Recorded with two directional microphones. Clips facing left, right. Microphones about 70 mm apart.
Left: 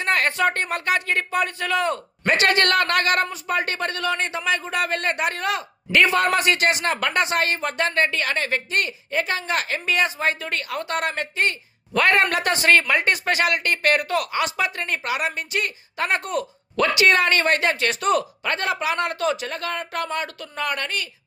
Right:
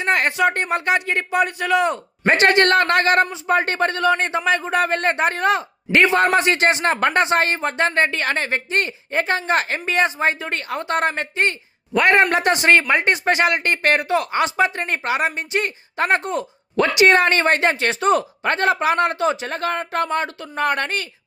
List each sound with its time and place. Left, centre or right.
0.0 s speech: right